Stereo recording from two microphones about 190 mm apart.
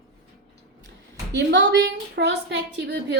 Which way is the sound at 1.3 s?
65° right (ahead or behind).